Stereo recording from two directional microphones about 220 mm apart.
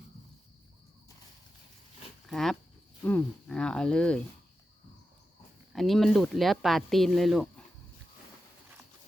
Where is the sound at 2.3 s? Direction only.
Centre (ahead or behind).